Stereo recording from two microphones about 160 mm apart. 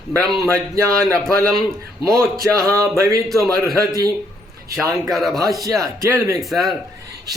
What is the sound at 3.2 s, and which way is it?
Speech, centre (ahead or behind).